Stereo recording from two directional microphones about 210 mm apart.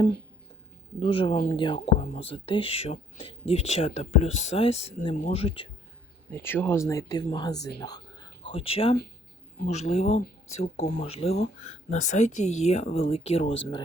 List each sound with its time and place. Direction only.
0.9 s speech: 25° left (ahead or behind)
6.3 s speech: 10° left (ahead or behind)
7.5 s speech: 55° left (ahead or behind)
7.8 s speech: 20° left (ahead or behind)